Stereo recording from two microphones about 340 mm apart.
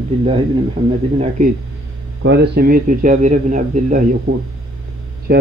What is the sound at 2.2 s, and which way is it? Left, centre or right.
A man's voice, right.